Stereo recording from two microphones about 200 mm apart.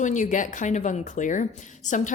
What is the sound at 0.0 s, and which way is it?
A woman's voice, 40° left (ahead or behind).